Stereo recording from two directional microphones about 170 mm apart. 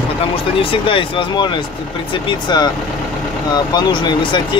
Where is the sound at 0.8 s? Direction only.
30° left (ahead or behind).